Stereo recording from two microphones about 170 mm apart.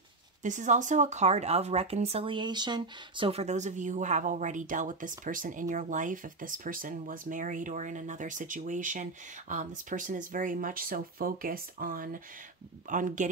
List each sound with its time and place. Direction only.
0.4 s speech: 45° right (ahead or behind)